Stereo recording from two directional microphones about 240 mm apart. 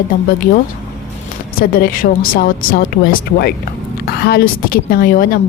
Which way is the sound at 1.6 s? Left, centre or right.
Left.